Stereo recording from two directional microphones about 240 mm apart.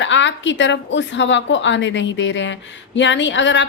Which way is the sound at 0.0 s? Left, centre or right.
Left.